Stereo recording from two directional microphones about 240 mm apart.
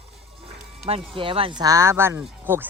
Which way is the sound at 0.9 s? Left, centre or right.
Right.